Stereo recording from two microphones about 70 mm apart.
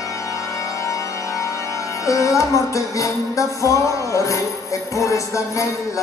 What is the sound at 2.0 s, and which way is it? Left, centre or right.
Music, left.